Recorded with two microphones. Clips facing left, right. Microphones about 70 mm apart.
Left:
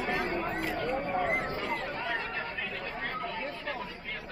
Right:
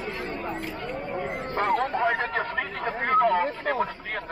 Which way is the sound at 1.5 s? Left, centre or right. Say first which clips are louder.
Right 10 dB; right.